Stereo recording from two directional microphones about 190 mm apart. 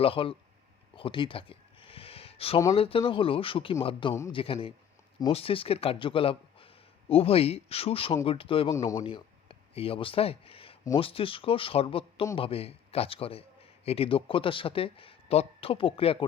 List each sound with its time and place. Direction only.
0.0 s speech: 30° left (ahead or behind)
0.9 s a sound: 25° left (ahead or behind)
2.7 s a man's voice: 30° left (ahead or behind)